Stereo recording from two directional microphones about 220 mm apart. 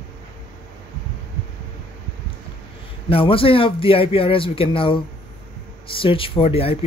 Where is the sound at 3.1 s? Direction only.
25° left (ahead or behind).